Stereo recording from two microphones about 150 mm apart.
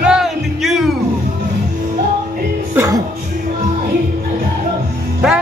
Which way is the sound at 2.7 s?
20° right (ahead or behind).